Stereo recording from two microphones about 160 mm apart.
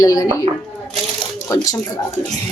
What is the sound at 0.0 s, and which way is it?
Speech, 20° left (ahead or behind).